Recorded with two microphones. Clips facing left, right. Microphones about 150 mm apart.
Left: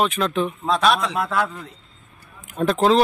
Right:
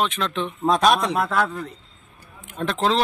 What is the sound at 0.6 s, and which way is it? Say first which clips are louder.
Speech: right 3 dB; 45° right (ahead or behind).